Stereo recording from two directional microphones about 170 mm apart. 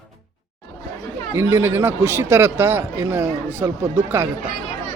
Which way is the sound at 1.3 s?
15° right (ahead or behind).